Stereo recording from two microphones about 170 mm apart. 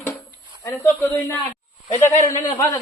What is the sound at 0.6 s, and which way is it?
A man's voice, 15° left (ahead or behind).